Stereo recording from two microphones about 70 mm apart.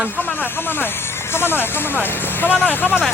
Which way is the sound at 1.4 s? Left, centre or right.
Left.